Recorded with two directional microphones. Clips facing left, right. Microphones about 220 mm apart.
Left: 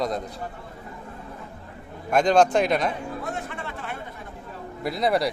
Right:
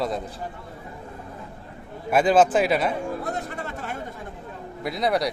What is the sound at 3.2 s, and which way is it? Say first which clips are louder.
Chatter: right 2 dB; 40° right (ahead or behind).